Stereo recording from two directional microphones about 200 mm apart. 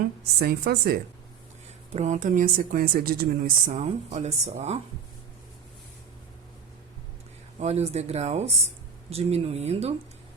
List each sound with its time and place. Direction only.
0.3 s speech: 50° right (ahead or behind)
1.9 s speech: 35° right (ahead or behind)
3.7 s speech: 35° right (ahead or behind)
7.6 s speech: 30° right (ahead or behind)